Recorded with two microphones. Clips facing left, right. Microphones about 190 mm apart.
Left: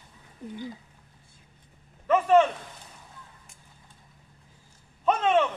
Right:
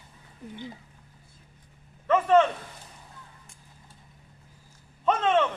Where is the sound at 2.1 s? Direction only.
10° left (ahead or behind).